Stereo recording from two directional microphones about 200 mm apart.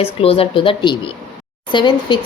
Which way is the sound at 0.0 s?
30° left (ahead or behind).